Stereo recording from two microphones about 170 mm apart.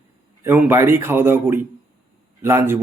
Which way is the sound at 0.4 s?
10° right (ahead or behind).